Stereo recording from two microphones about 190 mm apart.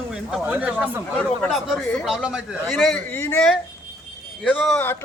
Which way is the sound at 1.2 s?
5° left (ahead or behind).